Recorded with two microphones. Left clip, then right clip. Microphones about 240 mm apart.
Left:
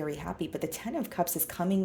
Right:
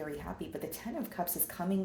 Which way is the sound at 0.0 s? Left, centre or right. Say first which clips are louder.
Left 6 dB; left.